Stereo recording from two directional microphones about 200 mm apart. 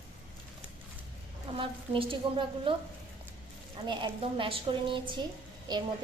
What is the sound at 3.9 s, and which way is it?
A woman's voice, 25° right (ahead or behind).